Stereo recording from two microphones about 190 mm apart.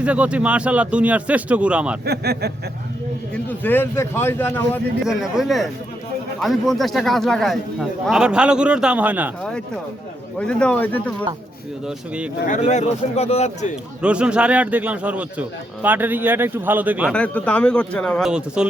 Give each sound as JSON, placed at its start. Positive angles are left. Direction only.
{"t": 0.0, "sound": "a man's voice", "side_deg": -5}
{"t": 2.0, "sound": "speech", "side_deg": -55}
{"t": 3.3, "sound": "speech", "side_deg": 10}
{"t": 5.0, "sound": "a man's voice", "side_deg": 0}
{"t": 9.4, "sound": "a man's voice", "side_deg": 5}
{"t": 11.9, "sound": "a man's voice", "side_deg": -5}
{"t": 12.5, "sound": "speech", "side_deg": 40}
{"t": 14.0, "sound": "a man's voice", "side_deg": -5}
{"t": 17.1, "sound": "a man's voice", "side_deg": 5}